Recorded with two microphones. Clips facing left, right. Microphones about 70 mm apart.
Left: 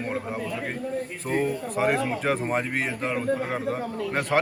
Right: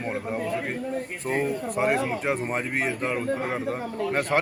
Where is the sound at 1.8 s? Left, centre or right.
Centre.